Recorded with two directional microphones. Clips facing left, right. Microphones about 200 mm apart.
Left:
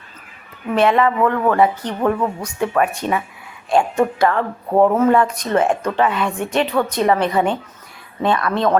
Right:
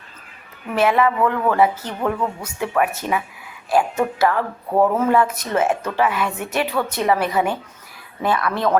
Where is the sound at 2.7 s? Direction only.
10° right (ahead or behind).